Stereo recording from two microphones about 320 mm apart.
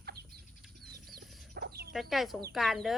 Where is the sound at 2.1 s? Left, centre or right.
Centre.